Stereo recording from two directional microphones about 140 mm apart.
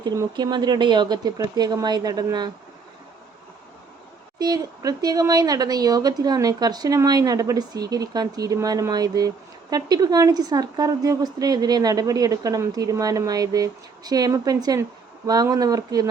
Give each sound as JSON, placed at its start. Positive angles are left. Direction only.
{"t": 0.3, "sound": "speech", "side_deg": -30}
{"t": 4.4, "sound": "speech", "side_deg": -25}